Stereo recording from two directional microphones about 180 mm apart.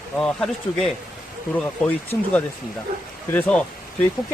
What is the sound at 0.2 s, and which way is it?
Speech, 5° left (ahead or behind).